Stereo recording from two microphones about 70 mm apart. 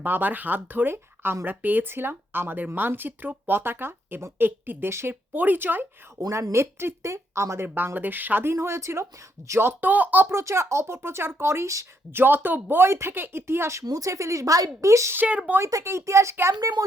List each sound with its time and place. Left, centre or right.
0.0 s speech: right
7.8 s speech: right
8.5 s speech: right
10.2 s speech: right
12.1 s speech: right
13.8 s speech: right
15.1 s speech: right
15.7 s speech: right
16.6 s speech: right